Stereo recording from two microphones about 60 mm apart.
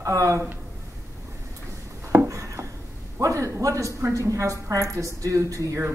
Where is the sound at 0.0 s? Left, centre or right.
Right.